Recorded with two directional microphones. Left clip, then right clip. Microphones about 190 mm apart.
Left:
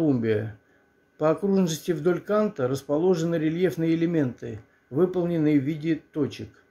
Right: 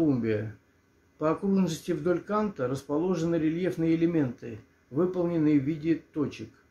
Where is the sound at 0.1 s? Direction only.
40° left (ahead or behind).